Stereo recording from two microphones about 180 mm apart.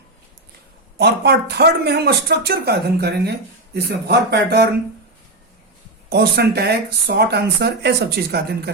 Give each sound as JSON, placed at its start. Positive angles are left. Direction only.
{"t": 0.9, "sound": "speech", "side_deg": -65}
{"t": 6.1, "sound": "speech", "side_deg": -65}